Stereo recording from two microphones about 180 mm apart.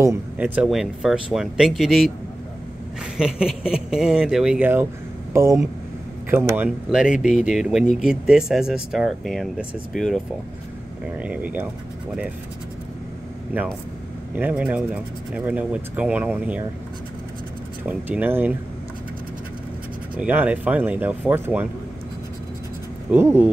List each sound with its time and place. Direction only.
0.0 s speech: 10° right (ahead or behind)
3.2 s speech: 5° right (ahead or behind)
14.3 s speech: 10° right (ahead or behind)
17.8 s speech: 10° right (ahead or behind)
20.2 s speech: 10° right (ahead or behind)
23.1 s speech: 10° right (ahead or behind)